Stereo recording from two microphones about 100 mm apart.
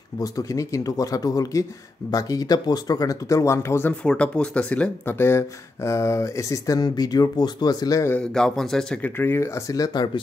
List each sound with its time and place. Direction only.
0.2 s speech: 35° left (ahead or behind)
4.0 s speech: 10° left (ahead or behind); by 8.1 s 40° left (ahead or behind)
8.2 s a man's voice: 5° left (ahead or behind)
9.0 s speech: 25° left (ahead or behind)